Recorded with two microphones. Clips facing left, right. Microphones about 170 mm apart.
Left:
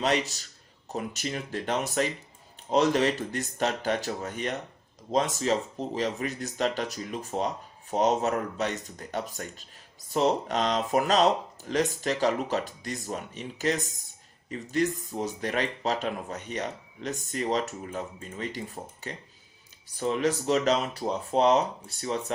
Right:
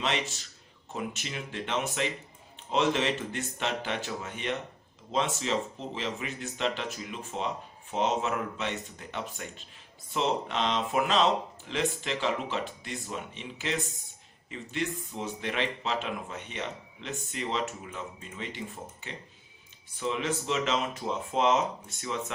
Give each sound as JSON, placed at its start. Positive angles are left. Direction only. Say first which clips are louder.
{"t": 0.0, "sound": "speech", "louder": "left 5 dB", "side_deg": 40}